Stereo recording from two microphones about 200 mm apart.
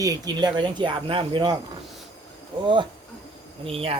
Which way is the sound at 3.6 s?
30° right (ahead or behind).